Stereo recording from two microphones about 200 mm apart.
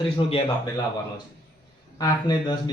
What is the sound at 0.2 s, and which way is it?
Speech, 25° left (ahead or behind).